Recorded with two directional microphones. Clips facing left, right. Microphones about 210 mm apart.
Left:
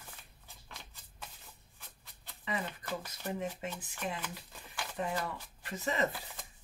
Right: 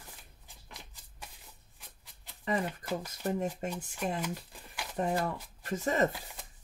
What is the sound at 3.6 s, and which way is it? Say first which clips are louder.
Speech: right 4 dB; 45° right (ahead or behind).